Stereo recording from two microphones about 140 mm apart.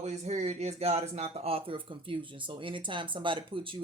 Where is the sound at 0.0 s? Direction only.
55° right (ahead or behind).